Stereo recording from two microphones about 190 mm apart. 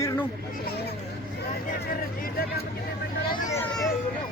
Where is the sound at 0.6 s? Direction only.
55° left (ahead or behind).